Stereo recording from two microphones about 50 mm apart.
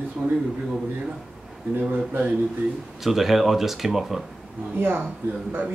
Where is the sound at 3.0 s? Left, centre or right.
Centre.